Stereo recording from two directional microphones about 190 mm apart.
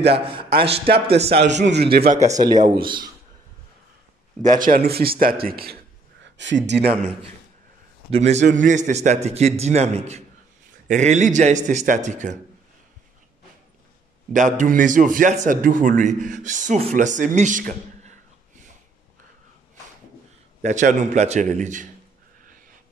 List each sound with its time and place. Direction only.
0.1 s speech: 25° right (ahead or behind)
1.4 s a man's voice: 65° right (ahead or behind)
2.0 s a man's voice: 40° right (ahead or behind)
2.4 s speech: 20° right (ahead or behind)
4.4 s a man's voice: 45° right (ahead or behind)
6.2 s speech: 70° right (ahead or behind)
8.1 s a man's voice: 35° right (ahead or behind)
14.3 s a man's voice: 40° right (ahead or behind)
20.6 s a man's voice: 40° right (ahead or behind)